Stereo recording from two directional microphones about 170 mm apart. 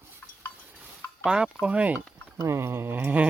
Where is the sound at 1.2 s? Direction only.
5° right (ahead or behind).